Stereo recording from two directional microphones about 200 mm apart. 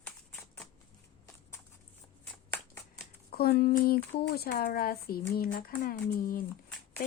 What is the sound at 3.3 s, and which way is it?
Speech, 50° left (ahead or behind).